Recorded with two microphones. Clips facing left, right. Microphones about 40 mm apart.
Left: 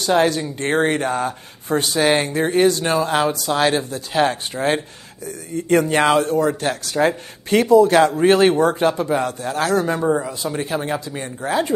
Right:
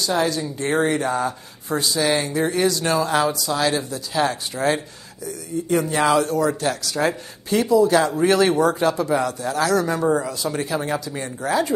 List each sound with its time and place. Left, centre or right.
0.0 s speech: left
3.3 s speech: left
4.6 s speech: left
5.2 s speech: left
7.4 s speech: left
8.2 s speech: left
10.4 s speech: centre
10.8 s speech: centre